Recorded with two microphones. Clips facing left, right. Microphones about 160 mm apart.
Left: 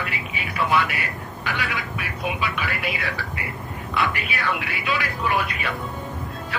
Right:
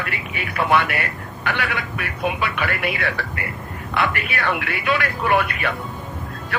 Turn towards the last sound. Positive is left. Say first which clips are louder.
# right 2 dB
turn(degrees=-60)  # may be behind; listen again after turning